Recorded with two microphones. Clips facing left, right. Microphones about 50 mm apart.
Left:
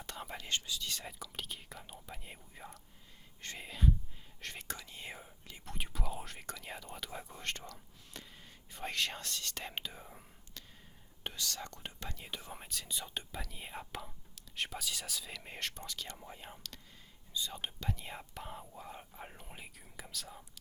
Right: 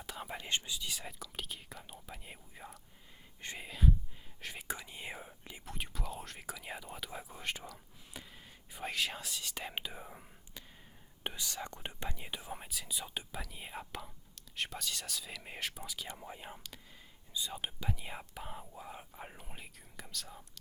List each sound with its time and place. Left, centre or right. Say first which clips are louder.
0.0 s whispering: right 1 dB; centre
0.3 s speech: right 1 dB; centre
0.9 s speech: even; centre
5.6 s speech: left 1 dB; centre